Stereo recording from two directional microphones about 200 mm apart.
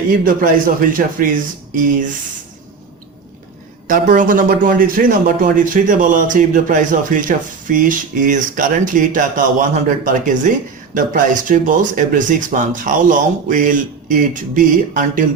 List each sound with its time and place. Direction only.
0.3 s a man's voice: 45° right (ahead or behind)
3.8 s speech: 40° right (ahead or behind)